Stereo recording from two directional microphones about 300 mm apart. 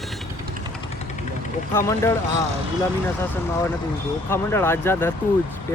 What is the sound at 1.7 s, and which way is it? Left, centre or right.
Speech, centre.